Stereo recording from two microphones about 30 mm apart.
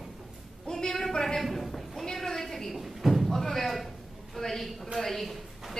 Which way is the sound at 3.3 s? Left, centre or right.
Centre.